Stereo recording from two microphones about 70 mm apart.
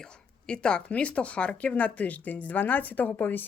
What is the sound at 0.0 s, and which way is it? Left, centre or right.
Speech, centre.